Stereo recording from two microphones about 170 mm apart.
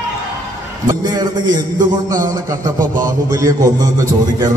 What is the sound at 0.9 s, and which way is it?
Music, 25° right (ahead or behind).